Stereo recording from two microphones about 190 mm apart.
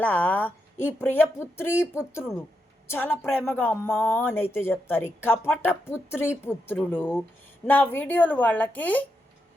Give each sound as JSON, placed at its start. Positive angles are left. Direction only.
{"t": 0.0, "sound": "a woman's voice", "side_deg": 10}